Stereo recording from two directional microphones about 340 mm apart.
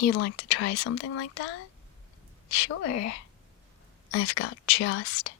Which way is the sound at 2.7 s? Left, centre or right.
Left.